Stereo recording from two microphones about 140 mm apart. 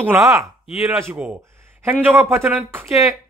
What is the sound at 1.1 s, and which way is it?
Speech, 10° right (ahead or behind).